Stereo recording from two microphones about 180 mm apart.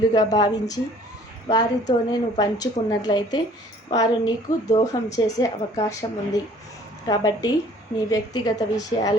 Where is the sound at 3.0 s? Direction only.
25° left (ahead or behind).